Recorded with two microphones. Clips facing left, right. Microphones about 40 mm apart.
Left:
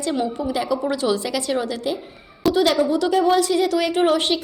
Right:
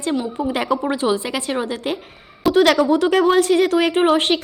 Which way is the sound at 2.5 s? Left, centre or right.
Right.